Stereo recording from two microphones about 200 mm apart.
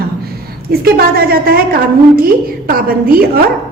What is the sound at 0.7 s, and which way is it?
A woman's voice, 50° right (ahead or behind).